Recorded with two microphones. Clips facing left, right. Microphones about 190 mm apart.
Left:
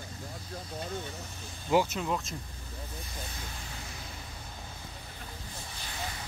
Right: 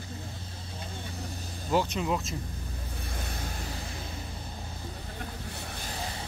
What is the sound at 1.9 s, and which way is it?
Speech, 5° right (ahead or behind).